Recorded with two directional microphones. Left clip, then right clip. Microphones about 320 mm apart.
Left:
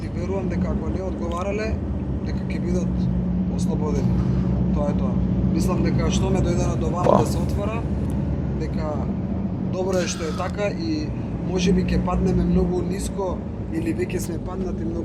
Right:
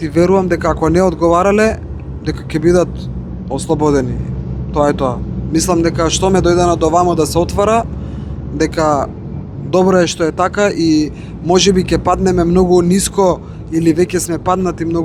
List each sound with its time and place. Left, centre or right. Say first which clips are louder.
0.1 s speech: right 17 dB; right
14.4 s speech: right 15 dB; right